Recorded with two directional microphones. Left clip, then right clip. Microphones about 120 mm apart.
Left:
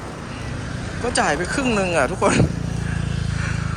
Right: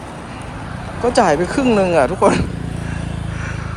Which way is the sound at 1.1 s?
10° left (ahead or behind).